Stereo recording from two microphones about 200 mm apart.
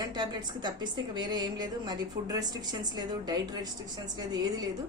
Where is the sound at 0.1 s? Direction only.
20° right (ahead or behind).